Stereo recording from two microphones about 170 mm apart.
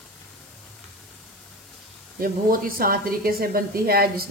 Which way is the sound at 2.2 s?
55° right (ahead or behind).